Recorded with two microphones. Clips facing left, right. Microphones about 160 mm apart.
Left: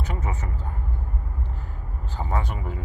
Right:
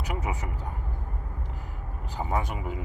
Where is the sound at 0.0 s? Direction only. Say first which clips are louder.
Left 1 dB; 15° right (ahead or behind).